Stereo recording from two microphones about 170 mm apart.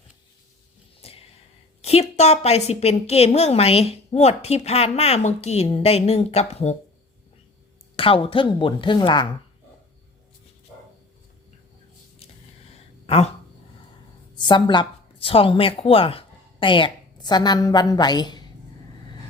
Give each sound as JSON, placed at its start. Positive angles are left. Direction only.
{"t": 1.0, "sound": "a sound", "side_deg": 35}
{"t": 1.8, "sound": "a woman's voice", "side_deg": 40}
{"t": 7.9, "sound": "speech", "side_deg": 30}
{"t": 14.3, "sound": "speech", "side_deg": 25}